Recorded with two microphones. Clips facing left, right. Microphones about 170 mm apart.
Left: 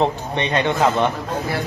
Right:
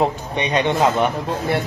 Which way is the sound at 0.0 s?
15° right (ahead or behind).